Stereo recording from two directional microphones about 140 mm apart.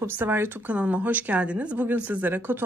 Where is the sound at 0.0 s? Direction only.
15° right (ahead or behind).